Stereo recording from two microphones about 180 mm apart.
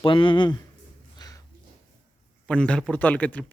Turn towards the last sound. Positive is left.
turn(degrees=10)  # may be behind; listen again after turning